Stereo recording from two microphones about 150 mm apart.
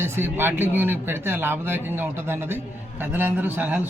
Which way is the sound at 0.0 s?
15° right (ahead or behind).